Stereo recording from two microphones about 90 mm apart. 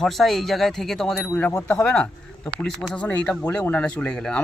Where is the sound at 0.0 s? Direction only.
5° left (ahead or behind).